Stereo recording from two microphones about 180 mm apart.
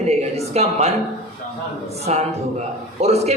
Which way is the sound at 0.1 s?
35° right (ahead or behind).